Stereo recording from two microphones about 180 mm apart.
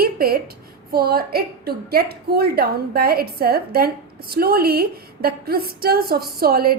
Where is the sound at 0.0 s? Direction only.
55° right (ahead or behind).